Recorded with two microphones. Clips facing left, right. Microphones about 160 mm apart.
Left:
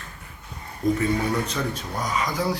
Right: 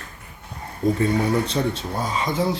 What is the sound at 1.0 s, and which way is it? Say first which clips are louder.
Speech: right 3 dB; 30° right (ahead or behind).